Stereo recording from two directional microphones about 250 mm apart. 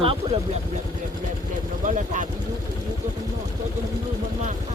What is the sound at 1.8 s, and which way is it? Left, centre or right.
Speech, right.